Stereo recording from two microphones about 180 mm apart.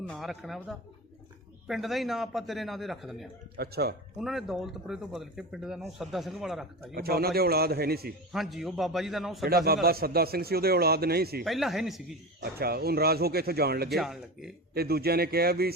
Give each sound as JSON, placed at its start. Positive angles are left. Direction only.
{"t": 0.0, "sound": "a man's voice", "side_deg": 0}
{"t": 3.6, "sound": "a man's voice", "side_deg": -60}
{"t": 4.2, "sound": "a man's voice", "side_deg": 0}
{"t": 6.9, "sound": "a man's voice", "side_deg": -60}
{"t": 8.3, "sound": "a man's voice", "side_deg": 0}
{"t": 9.5, "sound": "a man's voice", "side_deg": -55}
{"t": 11.4, "sound": "a man's voice", "side_deg": 0}
{"t": 12.4, "sound": "a man's voice", "side_deg": -60}
{"t": 13.9, "sound": "a man's voice", "side_deg": 0}
{"t": 14.7, "sound": "a man's voice", "side_deg": -60}